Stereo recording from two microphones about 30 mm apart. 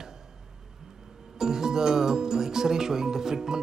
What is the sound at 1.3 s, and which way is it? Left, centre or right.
A man's voice, centre.